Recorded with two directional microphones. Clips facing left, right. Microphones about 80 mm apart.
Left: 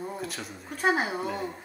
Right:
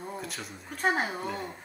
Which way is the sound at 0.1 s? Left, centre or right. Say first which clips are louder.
Left 2 dB; centre.